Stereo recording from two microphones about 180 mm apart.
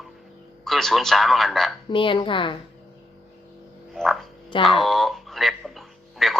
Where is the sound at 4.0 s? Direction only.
5° left (ahead or behind).